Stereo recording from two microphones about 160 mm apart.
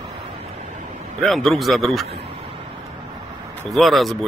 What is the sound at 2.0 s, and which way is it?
Speech, 40° right (ahead or behind).